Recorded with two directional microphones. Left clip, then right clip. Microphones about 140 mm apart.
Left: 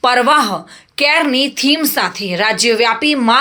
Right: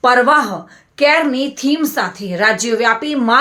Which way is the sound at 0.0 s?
15° left (ahead or behind).